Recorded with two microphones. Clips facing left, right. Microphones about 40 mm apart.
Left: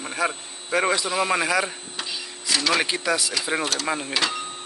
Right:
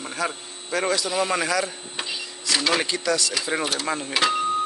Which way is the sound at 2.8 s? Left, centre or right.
Centre.